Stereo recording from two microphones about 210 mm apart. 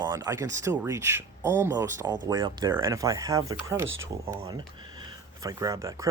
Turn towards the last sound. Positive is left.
turn(degrees=-15)  # may be behind; listen again after turning